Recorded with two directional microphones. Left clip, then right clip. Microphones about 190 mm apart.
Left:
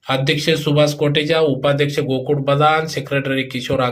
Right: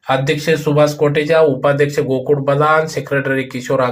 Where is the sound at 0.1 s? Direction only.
20° left (ahead or behind).